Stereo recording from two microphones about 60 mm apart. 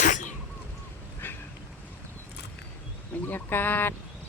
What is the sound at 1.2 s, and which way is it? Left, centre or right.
Vehicle, left.